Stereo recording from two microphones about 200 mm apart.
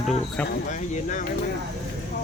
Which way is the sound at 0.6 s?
40° left (ahead or behind).